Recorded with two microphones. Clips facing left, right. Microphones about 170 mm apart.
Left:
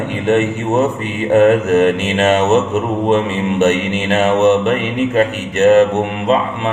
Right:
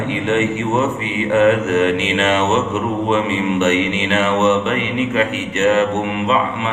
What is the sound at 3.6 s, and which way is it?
Mantra, 45° left (ahead or behind).